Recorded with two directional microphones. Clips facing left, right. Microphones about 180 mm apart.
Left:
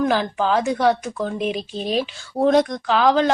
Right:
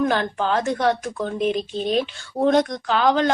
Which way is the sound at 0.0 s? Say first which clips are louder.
Left 1 dB; centre (ahead or behind).